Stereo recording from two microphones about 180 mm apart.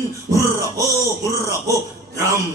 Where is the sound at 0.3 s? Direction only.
15° right (ahead or behind).